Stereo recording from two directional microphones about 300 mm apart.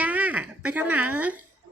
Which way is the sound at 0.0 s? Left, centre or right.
Centre.